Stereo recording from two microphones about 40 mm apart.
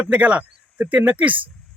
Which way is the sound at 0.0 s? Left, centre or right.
Right.